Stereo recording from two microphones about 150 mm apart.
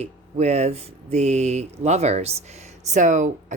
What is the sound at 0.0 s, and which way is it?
Speech, 45° right (ahead or behind).